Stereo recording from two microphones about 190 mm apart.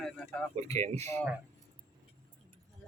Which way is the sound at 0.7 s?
35° right (ahead or behind).